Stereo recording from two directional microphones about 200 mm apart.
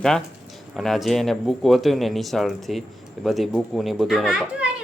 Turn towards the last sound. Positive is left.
turn(degrees=0)  # may be behind; listen again after turning